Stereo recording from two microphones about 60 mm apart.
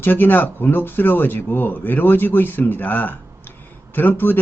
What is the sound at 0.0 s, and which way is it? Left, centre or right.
Speech, left.